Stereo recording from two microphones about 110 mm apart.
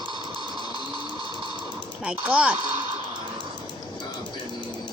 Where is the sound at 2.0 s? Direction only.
10° right (ahead or behind).